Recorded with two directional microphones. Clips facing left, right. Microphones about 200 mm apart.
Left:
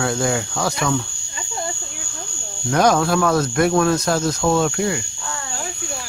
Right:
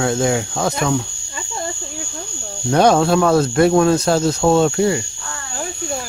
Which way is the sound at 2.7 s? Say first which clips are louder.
Right 3 dB; 30° right (ahead or behind).